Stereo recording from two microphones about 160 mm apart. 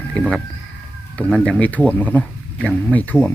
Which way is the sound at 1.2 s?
10° left (ahead or behind).